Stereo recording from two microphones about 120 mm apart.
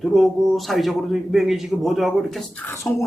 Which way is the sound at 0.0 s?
Centre (ahead or behind).